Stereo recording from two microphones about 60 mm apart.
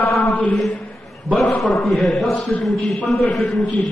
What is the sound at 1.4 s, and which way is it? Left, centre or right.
A man's voice, centre.